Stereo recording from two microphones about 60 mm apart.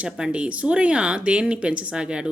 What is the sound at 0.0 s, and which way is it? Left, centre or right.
Speech, centre.